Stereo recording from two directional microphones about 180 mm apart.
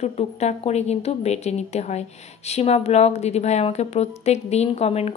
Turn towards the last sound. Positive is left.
turn(degrees=35)  # may be behind; listen again after turning